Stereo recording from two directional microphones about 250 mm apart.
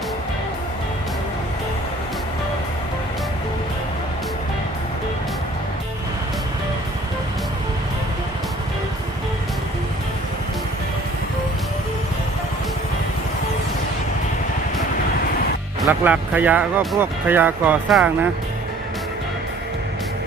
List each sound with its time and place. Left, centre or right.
15.8 s speech: centre